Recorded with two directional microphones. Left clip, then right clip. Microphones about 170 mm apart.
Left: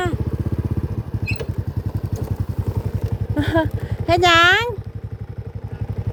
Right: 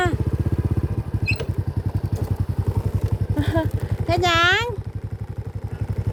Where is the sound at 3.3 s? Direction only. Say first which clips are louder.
Left 5 dB; 50° left (ahead or behind).